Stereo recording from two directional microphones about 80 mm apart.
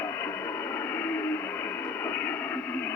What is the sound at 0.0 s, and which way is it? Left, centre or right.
Music, left.